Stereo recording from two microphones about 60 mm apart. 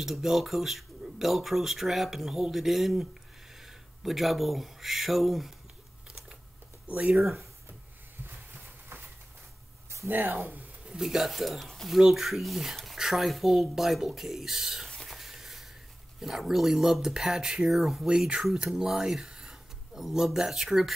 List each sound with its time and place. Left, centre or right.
0.0 s speech: centre
6.9 s speech: right
10.0 s speech: right
10.9 s speech: centre
14.9 s a sound: centre
15.1 s a sound: centre
16.2 s speech: centre